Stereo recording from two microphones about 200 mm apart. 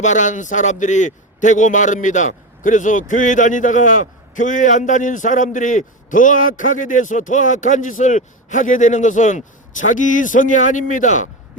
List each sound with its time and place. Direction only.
0.0 s a man's voice: 35° left (ahead or behind)